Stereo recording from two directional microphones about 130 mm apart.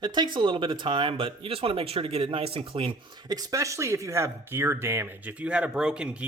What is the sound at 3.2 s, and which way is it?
A man's voice, 25° right (ahead or behind).